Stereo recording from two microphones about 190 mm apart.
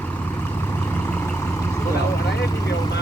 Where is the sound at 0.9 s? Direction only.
10° left (ahead or behind).